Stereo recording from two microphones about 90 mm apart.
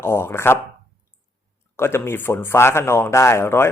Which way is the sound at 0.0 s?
25° left (ahead or behind).